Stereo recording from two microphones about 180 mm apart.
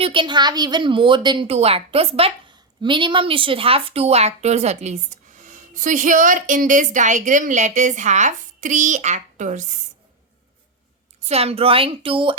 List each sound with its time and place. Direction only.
0.0 s a woman's voice: 25° right (ahead or behind); by 9.6 s 45° right (ahead or behind)
11.2 s speech: 35° right (ahead or behind)